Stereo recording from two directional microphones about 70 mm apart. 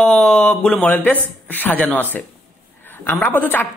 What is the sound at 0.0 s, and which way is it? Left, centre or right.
Speech, centre.